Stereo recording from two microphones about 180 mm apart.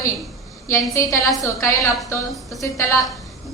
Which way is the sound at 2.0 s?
15° left (ahead or behind).